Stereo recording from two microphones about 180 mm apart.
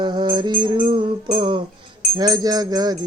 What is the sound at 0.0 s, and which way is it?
Music, 25° right (ahead or behind).